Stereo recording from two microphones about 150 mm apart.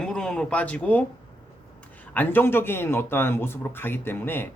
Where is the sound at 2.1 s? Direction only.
15° left (ahead or behind).